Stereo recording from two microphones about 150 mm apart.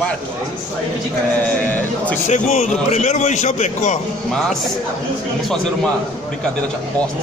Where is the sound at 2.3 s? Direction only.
50° left (ahead or behind).